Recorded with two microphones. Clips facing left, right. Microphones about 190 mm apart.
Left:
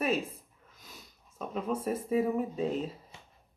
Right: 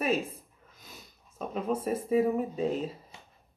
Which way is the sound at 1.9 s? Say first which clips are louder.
Right 3 dB; centre (ahead or behind).